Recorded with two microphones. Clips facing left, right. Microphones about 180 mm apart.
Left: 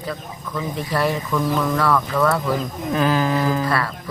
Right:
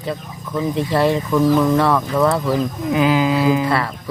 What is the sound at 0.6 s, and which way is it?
Speech, 25° right (ahead or behind).